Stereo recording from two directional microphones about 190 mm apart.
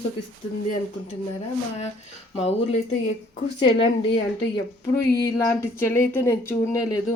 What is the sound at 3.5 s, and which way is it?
Speech, 25° left (ahead or behind).